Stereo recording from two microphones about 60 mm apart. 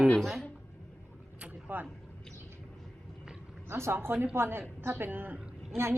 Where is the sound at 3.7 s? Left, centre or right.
Right.